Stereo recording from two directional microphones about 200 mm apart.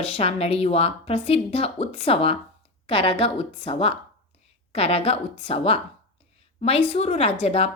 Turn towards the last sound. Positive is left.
turn(degrees=30)  # may be behind; listen again after turning